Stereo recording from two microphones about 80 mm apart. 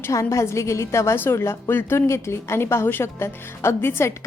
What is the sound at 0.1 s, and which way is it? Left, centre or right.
A woman's voice, left.